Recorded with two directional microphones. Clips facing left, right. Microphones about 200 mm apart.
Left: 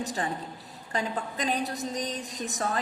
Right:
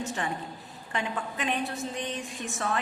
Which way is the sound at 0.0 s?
35° left (ahead or behind).